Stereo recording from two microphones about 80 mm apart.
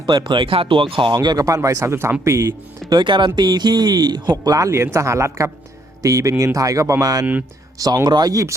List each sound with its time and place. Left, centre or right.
0.0 s speech: right
0.3 s speech: right
1.5 s speech: right
2.9 s speech: right
4.3 s speech: right